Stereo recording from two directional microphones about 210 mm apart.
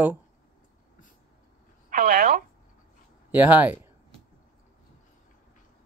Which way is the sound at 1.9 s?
40° right (ahead or behind).